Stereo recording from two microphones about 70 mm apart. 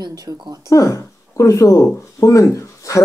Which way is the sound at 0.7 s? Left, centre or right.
Left.